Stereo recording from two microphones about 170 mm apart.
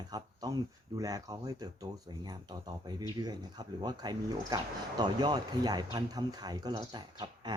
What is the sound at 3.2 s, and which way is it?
Speech, 25° right (ahead or behind).